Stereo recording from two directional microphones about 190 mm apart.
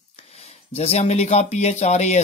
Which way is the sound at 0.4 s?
30° left (ahead or behind).